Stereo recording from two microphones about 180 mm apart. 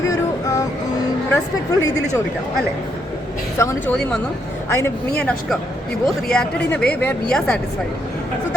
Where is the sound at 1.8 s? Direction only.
20° left (ahead or behind).